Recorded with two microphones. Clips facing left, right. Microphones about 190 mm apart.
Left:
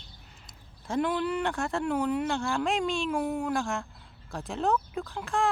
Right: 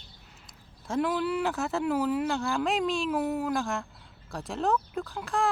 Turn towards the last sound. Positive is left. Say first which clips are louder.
# even
turn(degrees=0)  # may be behind; listen again after turning